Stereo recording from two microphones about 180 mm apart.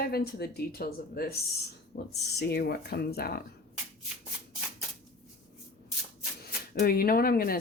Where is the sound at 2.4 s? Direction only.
60° left (ahead or behind).